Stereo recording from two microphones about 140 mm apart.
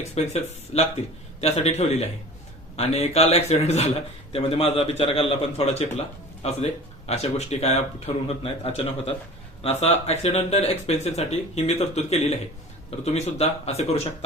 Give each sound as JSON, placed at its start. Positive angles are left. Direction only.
{"t": 0.1, "sound": "speech", "side_deg": 50}